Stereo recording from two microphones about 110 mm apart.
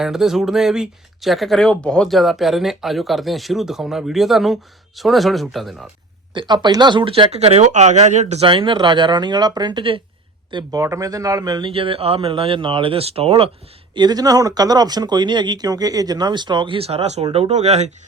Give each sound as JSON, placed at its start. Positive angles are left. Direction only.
{"t": 0.0, "sound": "speech", "side_deg": -5}
{"t": 6.3, "sound": "speech", "side_deg": -40}
{"t": 8.4, "sound": "speech", "side_deg": -50}
{"t": 11.7, "sound": "speech", "side_deg": -55}
{"t": 13.9, "sound": "speech", "side_deg": -40}
{"t": 17.3, "sound": "speech", "side_deg": -80}